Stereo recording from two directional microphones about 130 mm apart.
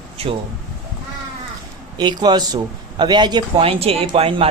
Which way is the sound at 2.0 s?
35° right (ahead or behind).